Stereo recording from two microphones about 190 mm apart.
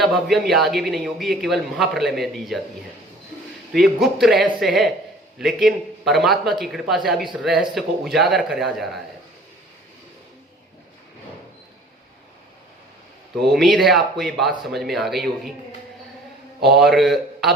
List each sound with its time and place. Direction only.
0.0 s a man's voice: centre (ahead or behind)
3.7 s a man's voice: centre (ahead or behind)
13.4 s a man's voice: centre (ahead or behind)
16.6 s a man's voice: 55° right (ahead or behind)
16.8 s a man's voice: centre (ahead or behind)